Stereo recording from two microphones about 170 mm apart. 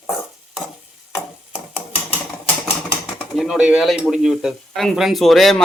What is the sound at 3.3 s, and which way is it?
Speech, centre (ahead or behind).